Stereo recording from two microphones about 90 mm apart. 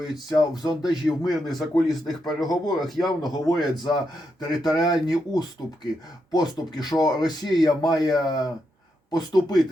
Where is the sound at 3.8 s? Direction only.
55° left (ahead or behind).